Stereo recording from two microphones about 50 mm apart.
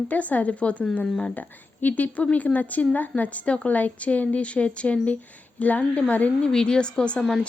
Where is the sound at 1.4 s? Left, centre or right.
Left.